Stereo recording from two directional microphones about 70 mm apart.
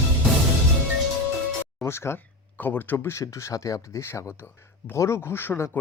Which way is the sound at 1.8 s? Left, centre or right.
Left.